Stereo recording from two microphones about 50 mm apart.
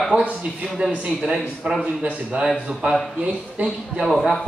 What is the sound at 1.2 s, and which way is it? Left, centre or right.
Speech, centre.